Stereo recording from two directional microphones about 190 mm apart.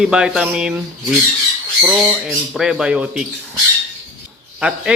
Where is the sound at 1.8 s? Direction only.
Centre (ahead or behind).